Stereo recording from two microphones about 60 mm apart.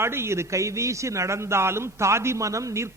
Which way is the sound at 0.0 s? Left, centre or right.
Right.